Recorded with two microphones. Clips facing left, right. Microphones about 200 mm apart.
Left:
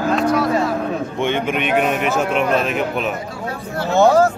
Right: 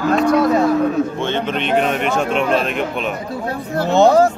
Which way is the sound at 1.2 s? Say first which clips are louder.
Left 1 dB; 15° left (ahead or behind).